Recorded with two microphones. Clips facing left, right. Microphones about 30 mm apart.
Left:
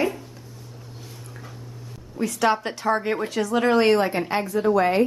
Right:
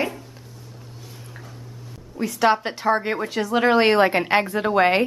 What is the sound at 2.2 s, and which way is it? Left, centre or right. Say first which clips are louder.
A woman's voice: right 2 dB; centre.